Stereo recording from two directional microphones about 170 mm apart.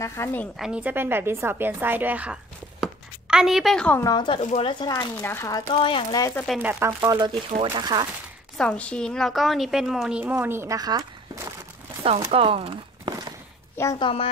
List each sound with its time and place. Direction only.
0.0 s speech: 15° left (ahead or behind)
0.6 s a woman's voice: 5° right (ahead or behind)
2.8 s a sound: 5° right (ahead or behind)
4.0 s speech: 25° left (ahead or behind)
4.4 s speech: 45° left (ahead or behind)
4.6 s speech: 25° left (ahead or behind)
5.2 s speech: 15° left (ahead or behind)
5.7 s speech: 30° left (ahead or behind)
6.6 s a woman's voice: 10° right (ahead or behind)
8.5 s a woman's voice: 5° left (ahead or behind); by 11.5 s 20° right (ahead or behind)
12.3 s speech: 35° right (ahead or behind)
13.9 s speech: 30° left (ahead or behind)